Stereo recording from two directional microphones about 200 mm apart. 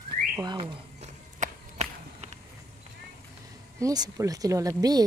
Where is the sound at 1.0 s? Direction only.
35° right (ahead or behind).